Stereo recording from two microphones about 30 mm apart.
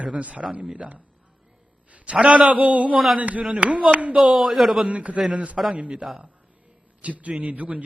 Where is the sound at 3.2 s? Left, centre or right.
Right.